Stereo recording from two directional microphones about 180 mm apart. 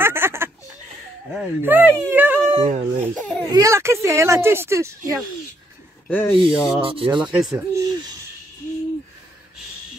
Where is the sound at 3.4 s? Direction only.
20° right (ahead or behind).